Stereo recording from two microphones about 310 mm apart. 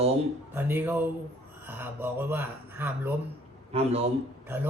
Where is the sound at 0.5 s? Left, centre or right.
Centre.